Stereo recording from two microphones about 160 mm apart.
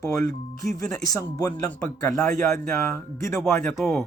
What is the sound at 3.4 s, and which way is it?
Speech, 5° left (ahead or behind).